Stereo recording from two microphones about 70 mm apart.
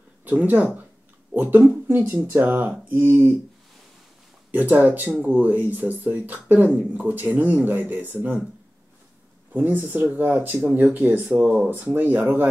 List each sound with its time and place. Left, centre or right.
0.2 s speech: right
2.0 s speech: right
4.5 s speech: right
9.5 s speech: right